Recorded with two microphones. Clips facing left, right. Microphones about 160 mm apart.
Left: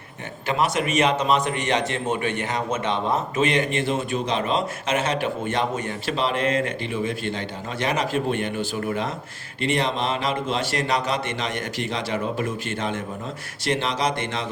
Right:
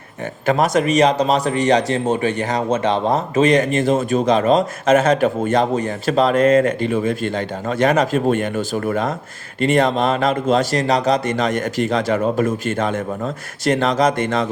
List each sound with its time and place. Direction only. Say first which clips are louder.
0.4 s a man's voice: right 7 dB; 45° right (ahead or behind)